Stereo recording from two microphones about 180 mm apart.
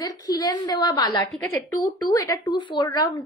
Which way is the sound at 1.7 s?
20° left (ahead or behind).